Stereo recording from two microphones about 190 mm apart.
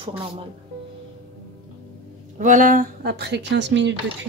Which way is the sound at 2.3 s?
45° right (ahead or behind).